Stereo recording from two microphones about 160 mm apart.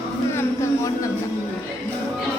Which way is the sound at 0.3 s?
20° left (ahead or behind).